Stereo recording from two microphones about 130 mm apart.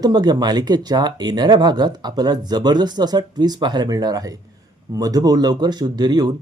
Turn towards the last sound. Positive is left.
turn(degrees=-30)  # may be behind; listen again after turning